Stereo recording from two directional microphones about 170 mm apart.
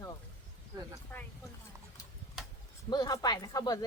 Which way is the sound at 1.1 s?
10° left (ahead or behind).